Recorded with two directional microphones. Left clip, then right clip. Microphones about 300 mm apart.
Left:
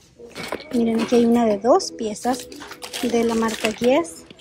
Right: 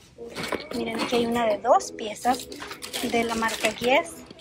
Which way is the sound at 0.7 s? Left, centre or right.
Centre.